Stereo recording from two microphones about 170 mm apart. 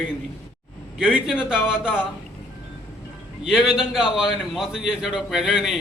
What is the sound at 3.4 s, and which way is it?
A man's voice, 5° right (ahead or behind).